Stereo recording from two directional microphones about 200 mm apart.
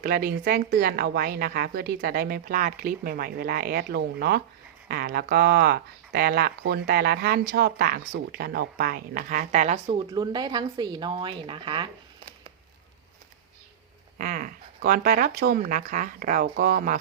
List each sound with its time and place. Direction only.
0.0 s speech: 50° right (ahead or behind)
9.8 s a woman's voice: 25° right (ahead or behind)
14.2 s speech: 45° right (ahead or behind)